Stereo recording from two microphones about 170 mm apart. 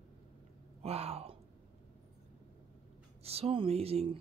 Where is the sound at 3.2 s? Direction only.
35° right (ahead or behind).